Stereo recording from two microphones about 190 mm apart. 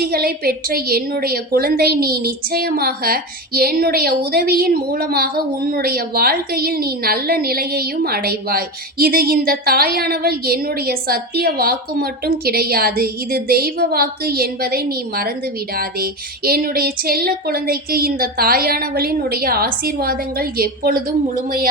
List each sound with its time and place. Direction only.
0.0 s a woman's voice: 55° right (ahead or behind)